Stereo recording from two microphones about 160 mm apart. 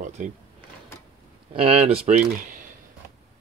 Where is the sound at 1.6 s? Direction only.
35° right (ahead or behind).